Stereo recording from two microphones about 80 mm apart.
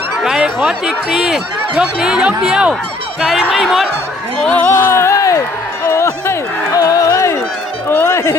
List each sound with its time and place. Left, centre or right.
0.3 s speech: centre
4.4 s speech: centre
4.6 s speech: left
5.9 s a sound: left
6.7 s music: left